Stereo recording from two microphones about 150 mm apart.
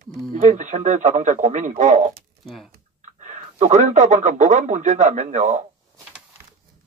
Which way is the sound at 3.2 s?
55° right (ahead or behind).